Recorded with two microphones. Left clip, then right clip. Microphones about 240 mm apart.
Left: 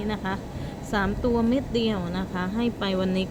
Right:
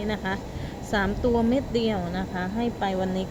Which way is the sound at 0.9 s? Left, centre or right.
Centre.